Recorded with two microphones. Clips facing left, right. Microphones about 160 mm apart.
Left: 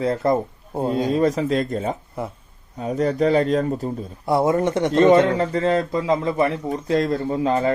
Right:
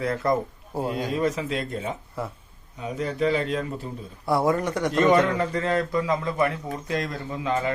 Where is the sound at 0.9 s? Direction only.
40° left (ahead or behind).